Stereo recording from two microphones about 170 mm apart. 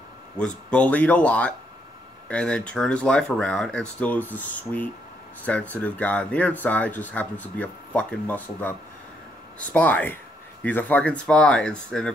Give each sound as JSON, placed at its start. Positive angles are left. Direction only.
{"t": 0.7, "sound": "speech", "side_deg": 10}